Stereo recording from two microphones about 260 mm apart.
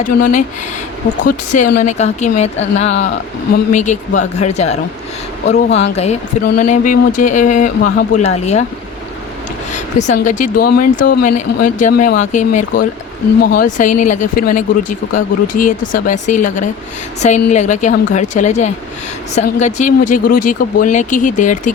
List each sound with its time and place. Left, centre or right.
0.0 s speech: left
5.5 s speech: left
6.6 s speech: left
9.7 s a sound: left
10.2 s speech: left